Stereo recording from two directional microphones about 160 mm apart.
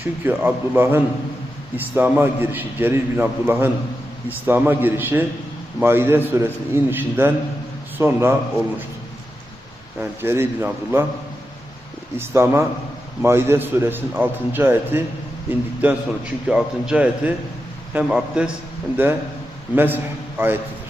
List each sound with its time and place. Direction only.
0.0 s a man's voice: 10° right (ahead or behind)
10.0 s a man's voice: 15° right (ahead or behind)
12.1 s a man's voice: 15° right (ahead or behind)